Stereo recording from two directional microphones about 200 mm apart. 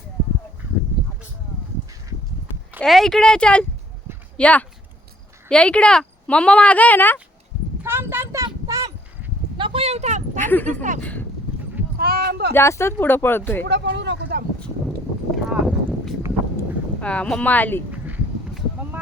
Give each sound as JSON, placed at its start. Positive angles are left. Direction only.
{"t": 2.8, "sound": "speech", "side_deg": 0}
{"t": 7.8, "sound": "a sound", "side_deg": -10}
{"t": 9.6, "sound": "speech", "side_deg": -25}
{"t": 11.9, "sound": "speech", "side_deg": -50}
{"t": 12.5, "sound": "speech", "side_deg": 15}
{"t": 13.7, "sound": "speech", "side_deg": -60}
{"t": 15.4, "sound": "clip-clop", "side_deg": 0}
{"t": 17.0, "sound": "speech", "side_deg": 5}
{"t": 17.9, "sound": "a sound", "side_deg": -10}